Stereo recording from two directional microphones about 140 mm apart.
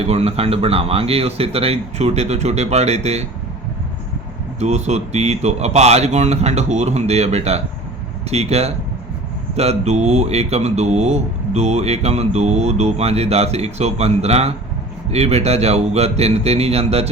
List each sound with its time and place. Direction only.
0.0 s speech: 45° right (ahead or behind)
4.6 s speech: 50° right (ahead or behind)